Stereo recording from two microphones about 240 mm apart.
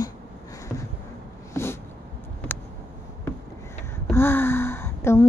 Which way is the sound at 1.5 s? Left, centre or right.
Centre.